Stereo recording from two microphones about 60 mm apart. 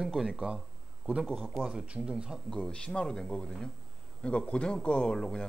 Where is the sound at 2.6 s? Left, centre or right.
Centre.